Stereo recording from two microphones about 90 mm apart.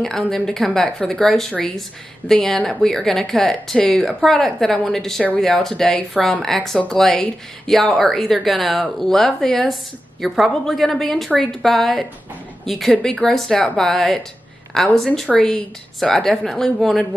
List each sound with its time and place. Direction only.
0.0 s a woman's voice: 5° left (ahead or behind)
12.9 s a woman's voice: 10° left (ahead or behind)